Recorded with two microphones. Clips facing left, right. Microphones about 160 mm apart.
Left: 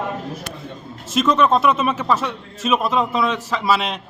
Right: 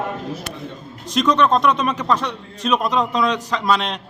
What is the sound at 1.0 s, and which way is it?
A man's voice, 5° left (ahead or behind).